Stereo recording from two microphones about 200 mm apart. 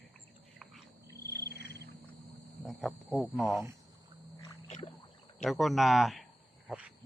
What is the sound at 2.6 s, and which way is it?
Speech, centre (ahead or behind).